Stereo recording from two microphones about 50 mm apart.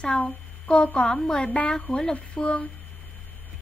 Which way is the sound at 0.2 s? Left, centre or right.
Left.